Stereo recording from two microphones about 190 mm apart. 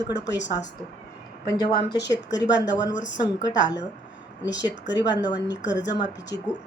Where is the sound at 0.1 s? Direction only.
65° left (ahead or behind).